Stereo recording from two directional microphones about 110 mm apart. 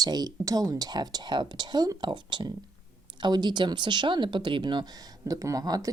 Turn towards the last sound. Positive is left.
turn(degrees=-35)  # may be behind; listen again after turning